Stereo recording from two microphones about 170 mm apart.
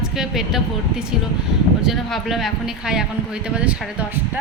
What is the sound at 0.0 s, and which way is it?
Speech, centre (ahead or behind).